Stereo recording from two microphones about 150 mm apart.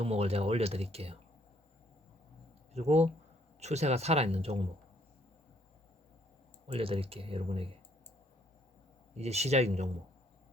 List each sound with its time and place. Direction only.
0.0 s speech: 45° right (ahead or behind)
2.7 s speech: 45° right (ahead or behind)
6.7 s speech: 40° right (ahead or behind)
9.1 s speech: 45° right (ahead or behind)